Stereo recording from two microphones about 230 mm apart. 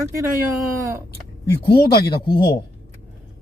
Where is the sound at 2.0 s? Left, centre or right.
Centre.